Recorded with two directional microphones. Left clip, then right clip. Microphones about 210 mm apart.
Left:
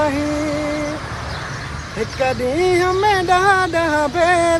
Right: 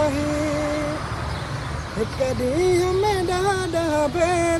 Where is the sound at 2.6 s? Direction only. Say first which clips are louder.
Left 4 dB; 20° left (ahead or behind).